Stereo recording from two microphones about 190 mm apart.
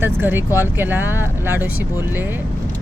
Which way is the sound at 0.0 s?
10° right (ahead or behind).